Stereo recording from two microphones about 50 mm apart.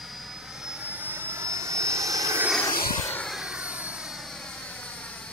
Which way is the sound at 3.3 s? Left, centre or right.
Centre.